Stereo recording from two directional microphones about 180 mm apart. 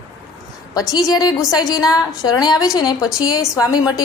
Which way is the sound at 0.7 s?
20° left (ahead or behind).